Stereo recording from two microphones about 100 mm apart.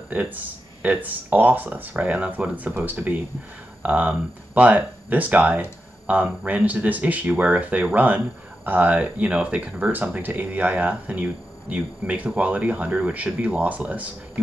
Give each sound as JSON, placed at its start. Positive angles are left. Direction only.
{"t": 0.1, "sound": "speech", "side_deg": -15}